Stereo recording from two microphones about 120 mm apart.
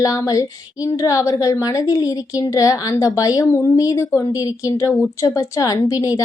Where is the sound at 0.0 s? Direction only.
30° left (ahead or behind).